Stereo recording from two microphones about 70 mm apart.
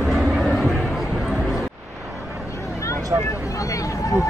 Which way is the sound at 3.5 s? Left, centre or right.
Left.